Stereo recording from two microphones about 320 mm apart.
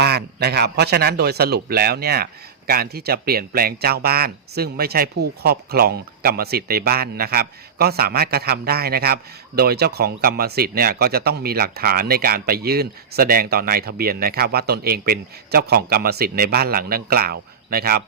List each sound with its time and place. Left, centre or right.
0.0 s speech: right